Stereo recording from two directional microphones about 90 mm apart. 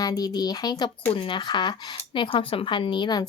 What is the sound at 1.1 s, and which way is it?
Speech, 70° left (ahead or behind).